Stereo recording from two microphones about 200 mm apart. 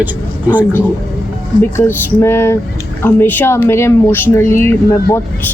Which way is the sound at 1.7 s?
10° left (ahead or behind).